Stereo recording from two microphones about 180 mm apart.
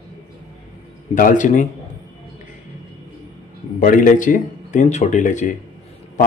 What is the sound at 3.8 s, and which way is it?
Speech, 45° left (ahead or behind).